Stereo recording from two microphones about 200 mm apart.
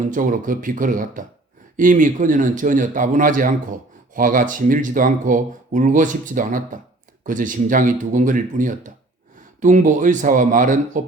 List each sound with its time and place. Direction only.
0.0 s a man's voice: 40° right (ahead or behind)